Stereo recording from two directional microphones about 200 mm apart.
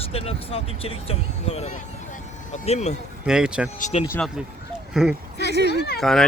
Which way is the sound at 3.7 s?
35° left (ahead or behind).